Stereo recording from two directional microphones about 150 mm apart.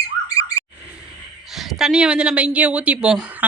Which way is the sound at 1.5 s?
Centre (ahead or behind).